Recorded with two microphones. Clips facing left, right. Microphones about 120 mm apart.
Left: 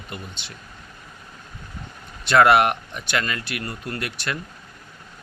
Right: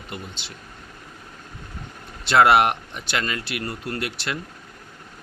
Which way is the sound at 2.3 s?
25° right (ahead or behind).